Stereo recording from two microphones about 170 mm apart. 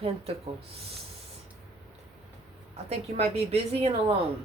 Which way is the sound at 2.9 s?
35° right (ahead or behind).